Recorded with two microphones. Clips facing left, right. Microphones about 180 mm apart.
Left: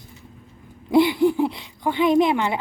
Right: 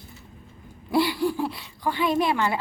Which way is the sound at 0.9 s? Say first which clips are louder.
Left 6 dB; 20° left (ahead or behind).